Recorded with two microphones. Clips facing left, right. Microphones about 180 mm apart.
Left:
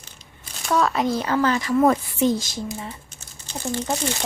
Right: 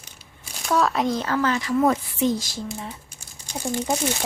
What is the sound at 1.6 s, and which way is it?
Speech, 50° left (ahead or behind).